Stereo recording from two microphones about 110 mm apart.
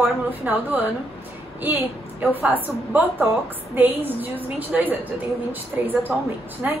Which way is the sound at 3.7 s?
15° right (ahead or behind).